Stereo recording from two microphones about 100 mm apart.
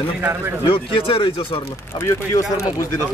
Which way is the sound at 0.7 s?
65° left (ahead or behind).